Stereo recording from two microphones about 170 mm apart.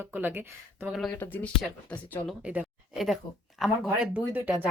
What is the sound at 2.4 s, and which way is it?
Speech, 5° right (ahead or behind).